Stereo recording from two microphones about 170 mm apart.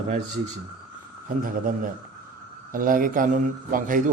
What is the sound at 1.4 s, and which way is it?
A man's voice, 55° right (ahead or behind).